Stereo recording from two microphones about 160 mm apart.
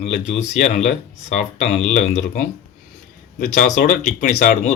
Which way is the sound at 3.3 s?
60° left (ahead or behind).